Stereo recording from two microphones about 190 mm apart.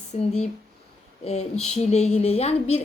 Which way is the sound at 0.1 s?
35° left (ahead or behind).